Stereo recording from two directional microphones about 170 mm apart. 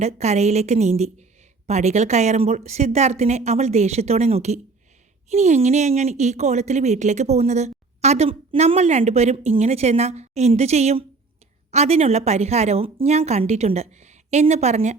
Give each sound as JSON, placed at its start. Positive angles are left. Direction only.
{"t": 0.0, "sound": "speech", "side_deg": -40}